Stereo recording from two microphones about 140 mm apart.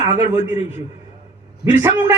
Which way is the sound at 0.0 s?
55° left (ahead or behind).